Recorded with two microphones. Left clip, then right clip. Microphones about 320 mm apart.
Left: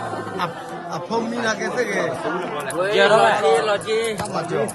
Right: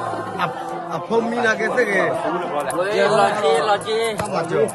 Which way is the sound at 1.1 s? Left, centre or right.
Centre.